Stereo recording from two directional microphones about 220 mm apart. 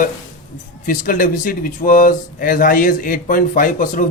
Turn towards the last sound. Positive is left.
turn(degrees=40)  # may be behind; listen again after turning